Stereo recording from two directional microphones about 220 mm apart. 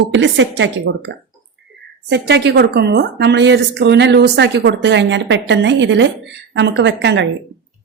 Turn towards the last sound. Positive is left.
turn(degrees=-50)  # may be behind; listen again after turning